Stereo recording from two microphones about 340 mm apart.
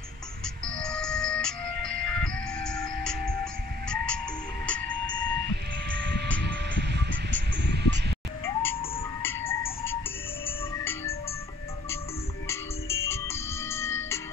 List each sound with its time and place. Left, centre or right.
0.7 s music: centre
4.6 s a sound: centre
6.4 s music: right
7.6 s a sound: right
8.6 s music: centre
12.4 s music: centre